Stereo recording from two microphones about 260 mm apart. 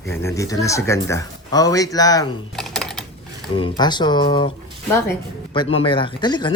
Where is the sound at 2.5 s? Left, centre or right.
Centre.